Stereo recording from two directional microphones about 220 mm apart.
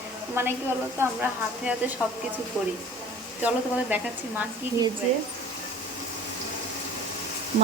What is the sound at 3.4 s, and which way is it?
Speech, 5° right (ahead or behind).